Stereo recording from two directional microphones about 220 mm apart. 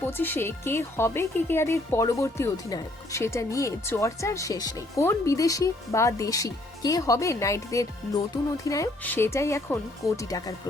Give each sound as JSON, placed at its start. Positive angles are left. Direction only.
{"t": 0.0, "sound": "speech", "side_deg": 10}